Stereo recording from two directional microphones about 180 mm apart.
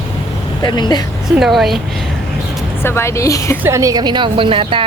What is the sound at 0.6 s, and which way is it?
Speech, 25° left (ahead or behind).